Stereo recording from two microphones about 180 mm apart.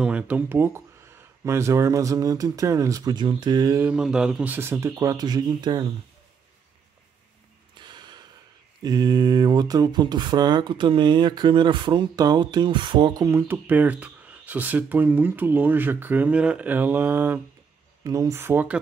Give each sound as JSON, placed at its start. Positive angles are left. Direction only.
{"t": 0.0, "sound": "speech", "side_deg": -5}
{"t": 3.8, "sound": "speech", "side_deg": -5}
{"t": 7.7, "sound": "a sound", "side_deg": -25}
{"t": 8.8, "sound": "speech", "side_deg": -20}